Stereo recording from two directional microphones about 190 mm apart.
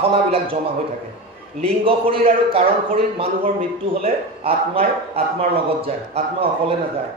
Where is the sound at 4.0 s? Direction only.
30° right (ahead or behind).